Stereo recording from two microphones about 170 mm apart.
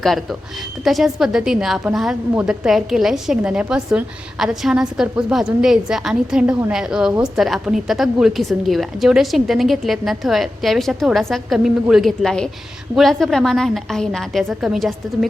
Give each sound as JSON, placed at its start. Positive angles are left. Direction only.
{"t": 0.0, "sound": "a woman's voice", "side_deg": 0}